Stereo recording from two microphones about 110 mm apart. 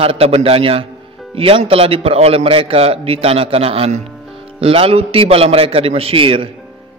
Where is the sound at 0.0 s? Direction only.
60° right (ahead or behind).